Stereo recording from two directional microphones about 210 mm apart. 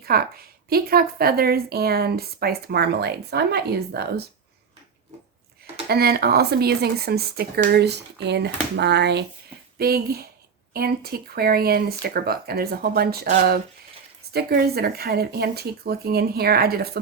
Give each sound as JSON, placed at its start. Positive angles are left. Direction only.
{"t": 0.0, "sound": "speech", "side_deg": -45}
{"t": 5.9, "sound": "speech", "side_deg": -45}